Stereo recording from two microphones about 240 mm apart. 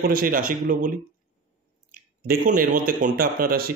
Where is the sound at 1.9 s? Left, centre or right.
Right.